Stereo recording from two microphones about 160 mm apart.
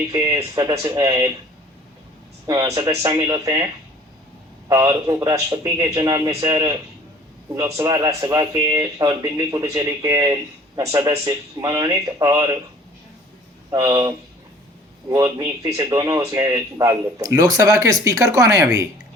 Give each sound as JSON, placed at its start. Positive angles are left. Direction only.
{"t": 0.1, "sound": "a man's voice", "side_deg": -20}
{"t": 2.5, "sound": "a man's voice", "side_deg": -25}
{"t": 4.7, "sound": "a man's voice", "side_deg": -25}
{"t": 13.7, "sound": "a man's voice", "side_deg": -20}